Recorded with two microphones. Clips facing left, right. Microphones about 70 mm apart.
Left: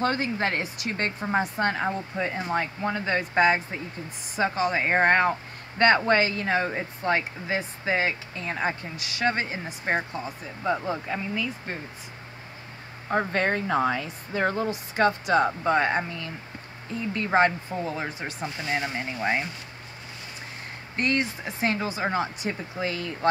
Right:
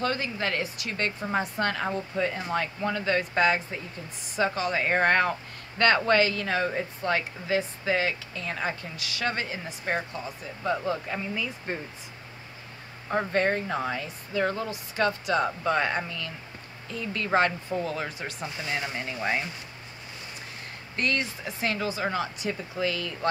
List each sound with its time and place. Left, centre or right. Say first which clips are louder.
0.0 s speech: left 3 dB; left
1.6 s speech: left 2 dB; left
11.1 s speech: left 2 dB; centre
13.3 s speech: left 1 dB; left
14.3 s speech: left 2 dB; left; by 19.4 s centre
20.9 s speech: left 3 dB; left